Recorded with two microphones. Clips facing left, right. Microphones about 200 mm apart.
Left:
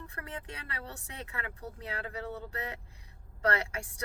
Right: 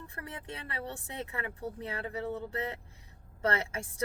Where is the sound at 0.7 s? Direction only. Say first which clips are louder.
Right 6 dB; 25° right (ahead or behind).